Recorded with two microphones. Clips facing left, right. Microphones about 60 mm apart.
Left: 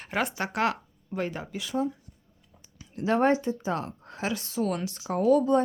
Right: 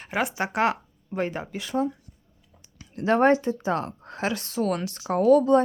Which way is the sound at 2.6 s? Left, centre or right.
Right.